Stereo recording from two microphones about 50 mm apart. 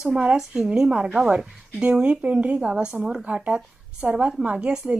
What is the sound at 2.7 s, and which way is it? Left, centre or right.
Speech, centre.